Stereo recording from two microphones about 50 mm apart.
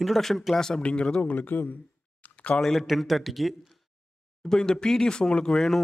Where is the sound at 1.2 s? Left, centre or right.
Left.